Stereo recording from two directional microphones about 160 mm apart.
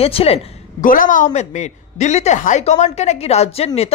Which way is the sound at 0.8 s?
55° left (ahead or behind).